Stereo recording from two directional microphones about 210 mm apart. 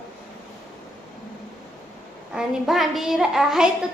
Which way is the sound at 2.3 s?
Centre (ahead or behind).